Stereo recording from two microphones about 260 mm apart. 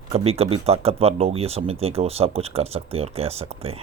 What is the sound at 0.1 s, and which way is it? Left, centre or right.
Speech, right.